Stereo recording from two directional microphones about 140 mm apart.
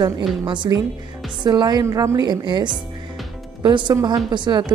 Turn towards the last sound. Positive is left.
turn(degrees=-35)  # may be behind; listen again after turning